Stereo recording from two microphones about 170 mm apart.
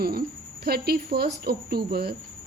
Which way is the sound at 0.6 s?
65° right (ahead or behind).